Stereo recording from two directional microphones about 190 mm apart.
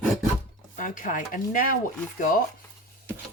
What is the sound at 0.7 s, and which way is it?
Speech, 45° left (ahead or behind).